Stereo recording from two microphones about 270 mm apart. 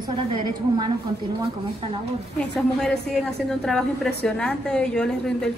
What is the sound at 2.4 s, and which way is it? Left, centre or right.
A woman's voice, centre.